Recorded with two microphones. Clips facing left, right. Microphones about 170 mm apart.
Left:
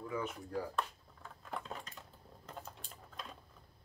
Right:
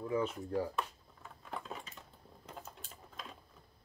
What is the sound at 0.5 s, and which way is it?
Dishes, 5° right (ahead or behind).